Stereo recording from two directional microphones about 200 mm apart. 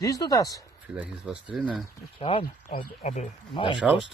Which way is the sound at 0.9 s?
5° right (ahead or behind).